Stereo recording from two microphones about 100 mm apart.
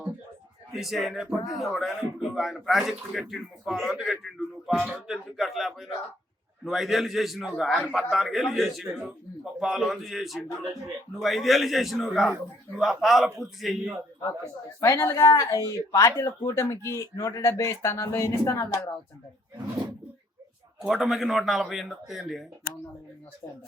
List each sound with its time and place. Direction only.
0.7 s speech: centre (ahead or behind)
14.8 s speech: 30° left (ahead or behind)
20.8 s speech: 5° right (ahead or behind)